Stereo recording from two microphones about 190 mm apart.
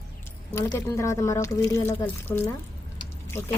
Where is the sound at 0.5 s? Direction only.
15° left (ahead or behind).